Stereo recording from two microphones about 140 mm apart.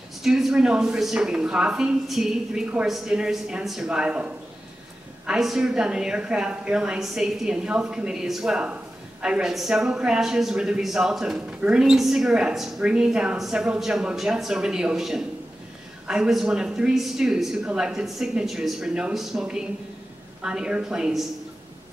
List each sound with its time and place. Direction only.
0.2 s a woman's voice: 5° right (ahead or behind)